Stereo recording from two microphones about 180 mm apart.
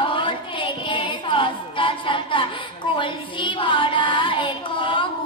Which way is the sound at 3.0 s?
25° left (ahead or behind).